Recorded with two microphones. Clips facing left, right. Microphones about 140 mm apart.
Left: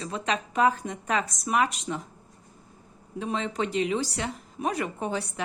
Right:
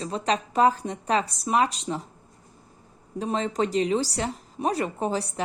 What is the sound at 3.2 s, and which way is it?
A woman's voice, 35° right (ahead or behind).